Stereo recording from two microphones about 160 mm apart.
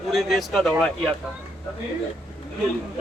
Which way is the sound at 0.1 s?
Centre (ahead or behind).